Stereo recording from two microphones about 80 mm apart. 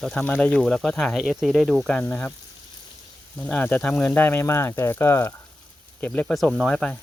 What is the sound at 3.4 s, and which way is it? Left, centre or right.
Speech, centre.